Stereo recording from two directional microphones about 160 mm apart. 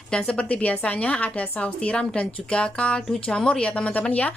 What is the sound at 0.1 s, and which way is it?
A woman's voice, 5° left (ahead or behind).